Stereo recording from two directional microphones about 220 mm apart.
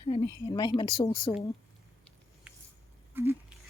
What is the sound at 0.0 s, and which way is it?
A woman's voice, 20° left (ahead or behind).